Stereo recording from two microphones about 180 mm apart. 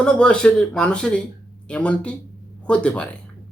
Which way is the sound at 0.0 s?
5° left (ahead or behind).